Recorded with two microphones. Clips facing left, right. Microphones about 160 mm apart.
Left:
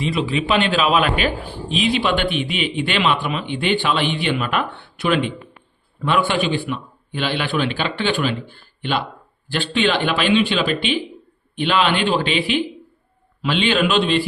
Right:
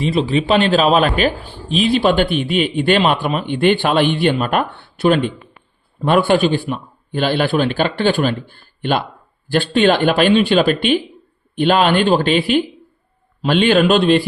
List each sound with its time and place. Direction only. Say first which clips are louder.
0.0 s speech: right 4 dB; 35° right (ahead or behind)